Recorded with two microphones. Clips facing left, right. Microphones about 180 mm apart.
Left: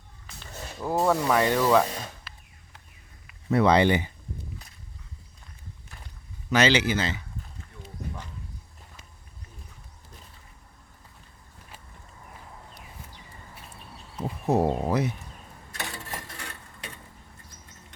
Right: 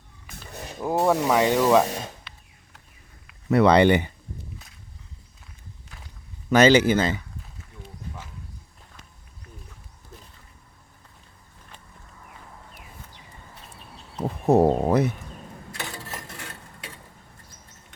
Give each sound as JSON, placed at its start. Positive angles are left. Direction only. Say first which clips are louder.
{"t": 0.5, "sound": "speech", "louder": "right 2 dB", "side_deg": -15}
{"t": 1.7, "sound": "speech", "louder": "right 3 dB", "side_deg": -25}
{"t": 2.3, "sound": "a sound", "louder": "even", "side_deg": 5}
{"t": 3.5, "sound": "speech", "louder": "right 4 dB", "side_deg": -70}
{"t": 6.5, "sound": "speech", "louder": "right 6 dB", "side_deg": -50}
{"t": 14.2, "sound": "chicken", "louder": "right 6 dB", "side_deg": -60}
{"t": 14.8, "sound": "speech", "louder": "right 5 dB", "side_deg": -55}